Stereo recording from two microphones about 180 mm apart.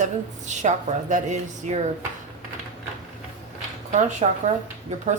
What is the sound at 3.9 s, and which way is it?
Speech, 40° right (ahead or behind).